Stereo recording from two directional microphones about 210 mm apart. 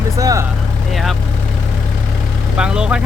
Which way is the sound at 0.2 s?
15° right (ahead or behind).